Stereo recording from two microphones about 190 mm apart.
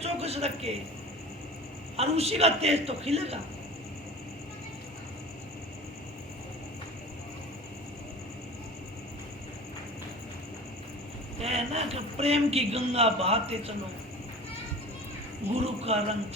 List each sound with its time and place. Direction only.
0.0 s a sound: 35° right (ahead or behind)
2.0 s a man's voice: 30° right (ahead or behind)
11.3 s a man's voice: 30° right (ahead or behind)
15.5 s a man's voice: 30° right (ahead or behind)